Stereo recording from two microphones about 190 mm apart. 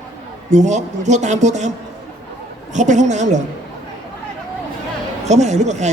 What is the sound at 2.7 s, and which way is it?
Speech, 40° right (ahead or behind).